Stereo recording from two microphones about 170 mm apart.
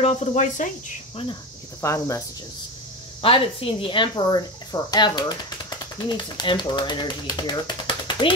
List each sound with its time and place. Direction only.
0.0 s speech: 45° left (ahead or behind)
1.8 s speech: 15° left (ahead or behind)
3.2 s a woman's voice: 30° left (ahead or behind)